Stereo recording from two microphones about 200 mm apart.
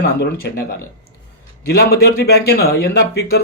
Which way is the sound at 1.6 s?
55° left (ahead or behind).